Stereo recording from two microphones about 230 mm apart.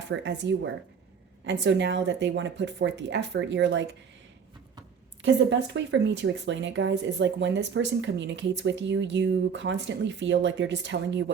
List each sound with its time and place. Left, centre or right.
0.1 s speech: right
5.2 s speech: right